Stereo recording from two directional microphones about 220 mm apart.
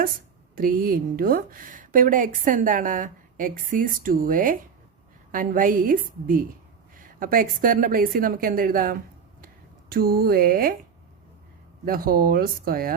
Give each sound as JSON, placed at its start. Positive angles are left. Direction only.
{"t": 0.5, "sound": "a woman's voice", "side_deg": -40}
{"t": 11.9, "sound": "speech", "side_deg": -40}